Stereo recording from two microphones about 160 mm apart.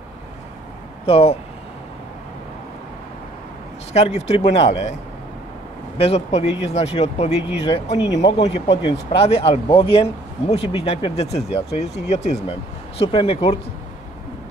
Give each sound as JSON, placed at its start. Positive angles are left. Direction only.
{"t": 1.0, "sound": "speech", "side_deg": 40}
{"t": 3.9, "sound": "speech", "side_deg": 40}
{"t": 5.9, "sound": "speech", "side_deg": 40}